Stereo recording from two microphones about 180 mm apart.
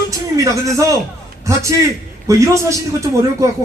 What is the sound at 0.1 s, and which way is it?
Speech, 15° right (ahead or behind).